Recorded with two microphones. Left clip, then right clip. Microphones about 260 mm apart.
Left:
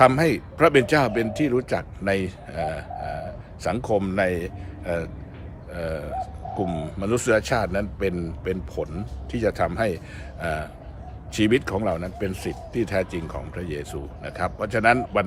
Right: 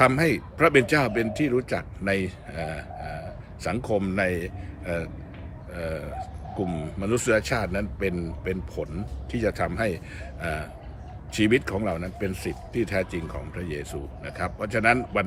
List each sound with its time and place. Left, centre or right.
0.0 s speech: centre